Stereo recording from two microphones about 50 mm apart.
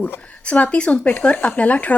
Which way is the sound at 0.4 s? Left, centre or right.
Left.